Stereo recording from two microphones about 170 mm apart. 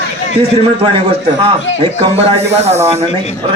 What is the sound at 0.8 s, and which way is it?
Speech, 30° right (ahead or behind).